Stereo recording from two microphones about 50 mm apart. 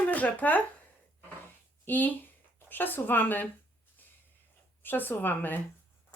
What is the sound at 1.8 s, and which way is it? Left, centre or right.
A woman's voice, left.